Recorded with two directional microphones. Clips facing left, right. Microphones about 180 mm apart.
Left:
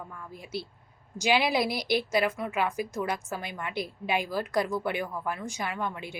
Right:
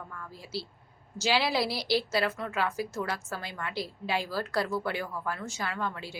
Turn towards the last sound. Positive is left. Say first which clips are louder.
# left 1 dB
turn(degrees=15)  # may be behind; listen again after turning